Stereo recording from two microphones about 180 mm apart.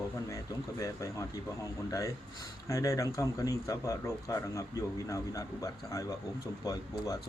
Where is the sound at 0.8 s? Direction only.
15° left (ahead or behind).